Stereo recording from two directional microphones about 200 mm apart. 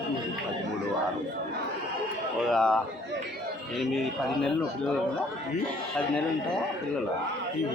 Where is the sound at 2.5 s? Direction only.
5° left (ahead or behind).